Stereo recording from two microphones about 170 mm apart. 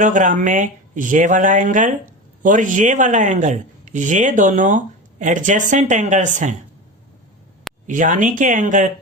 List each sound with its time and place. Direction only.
0.0 s speech: 50° right (ahead or behind)
7.9 s speech: 50° right (ahead or behind)